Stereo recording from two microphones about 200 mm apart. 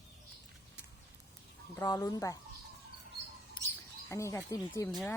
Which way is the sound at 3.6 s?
25° left (ahead or behind).